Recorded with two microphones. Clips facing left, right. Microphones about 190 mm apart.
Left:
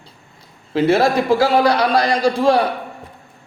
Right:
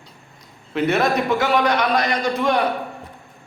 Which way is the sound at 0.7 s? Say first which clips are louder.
Left 4 dB; 30° left (ahead or behind).